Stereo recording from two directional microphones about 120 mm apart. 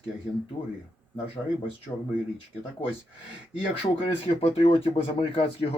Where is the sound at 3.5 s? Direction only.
50° left (ahead or behind).